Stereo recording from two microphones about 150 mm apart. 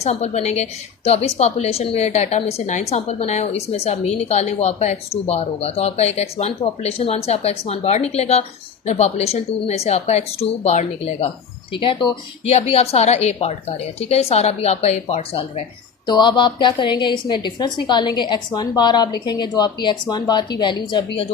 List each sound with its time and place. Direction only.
0.0 s a woman's voice: 45° left (ahead or behind)
11.7 s a woman's voice: 35° left (ahead or behind)
16.0 s a woman's voice: 30° left (ahead or behind)